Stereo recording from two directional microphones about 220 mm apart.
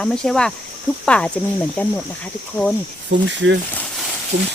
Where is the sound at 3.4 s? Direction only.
60° right (ahead or behind).